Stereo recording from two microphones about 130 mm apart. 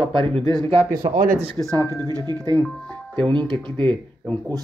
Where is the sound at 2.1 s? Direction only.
30° right (ahead or behind).